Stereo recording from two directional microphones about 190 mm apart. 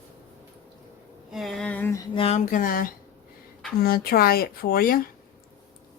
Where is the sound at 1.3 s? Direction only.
Centre (ahead or behind).